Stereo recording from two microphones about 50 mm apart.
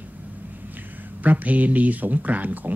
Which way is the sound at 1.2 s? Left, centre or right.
Right.